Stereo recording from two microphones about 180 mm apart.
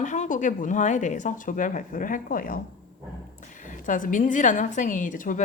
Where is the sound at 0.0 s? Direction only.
45° left (ahead or behind).